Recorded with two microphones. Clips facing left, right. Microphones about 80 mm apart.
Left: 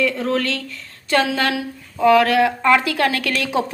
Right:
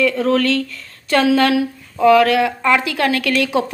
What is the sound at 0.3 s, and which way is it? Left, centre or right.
Speech, left.